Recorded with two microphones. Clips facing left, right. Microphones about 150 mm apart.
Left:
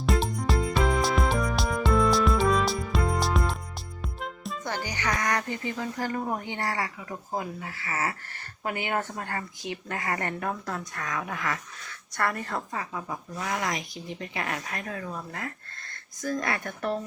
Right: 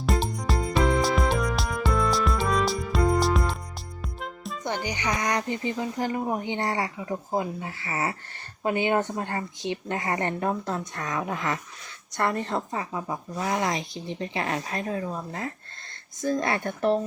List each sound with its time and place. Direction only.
0.0 s music: centre (ahead or behind)
4.6 s speech: 20° right (ahead or behind)